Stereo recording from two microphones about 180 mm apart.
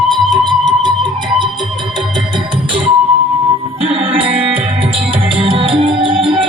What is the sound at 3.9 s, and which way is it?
Music, 30° right (ahead or behind).